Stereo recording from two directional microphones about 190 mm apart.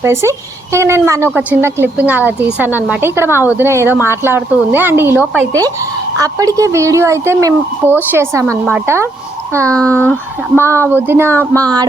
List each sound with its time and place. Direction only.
0.0 s speech: 15° right (ahead or behind)
9.7 s speech: 5° left (ahead or behind)
10.6 s speech: 15° right (ahead or behind)